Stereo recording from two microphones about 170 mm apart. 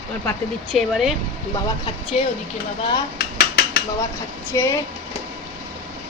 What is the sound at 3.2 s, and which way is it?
Dishes, 65° left (ahead or behind).